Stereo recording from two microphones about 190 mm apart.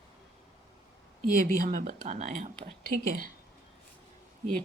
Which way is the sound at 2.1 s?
35° right (ahead or behind).